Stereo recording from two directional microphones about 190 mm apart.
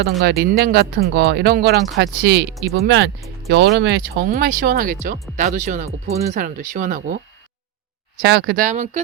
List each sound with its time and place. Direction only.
0.0 s speech: 55° right (ahead or behind)
8.2 s speech: 60° right (ahead or behind); by 9.0 s 40° right (ahead or behind)